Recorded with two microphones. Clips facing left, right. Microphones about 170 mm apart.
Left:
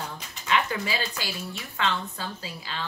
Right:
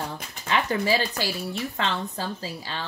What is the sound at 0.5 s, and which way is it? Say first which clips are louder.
Speech: right 3 dB; 35° right (ahead or behind).